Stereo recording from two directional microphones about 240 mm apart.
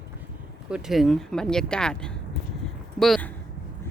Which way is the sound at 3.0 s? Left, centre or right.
Centre.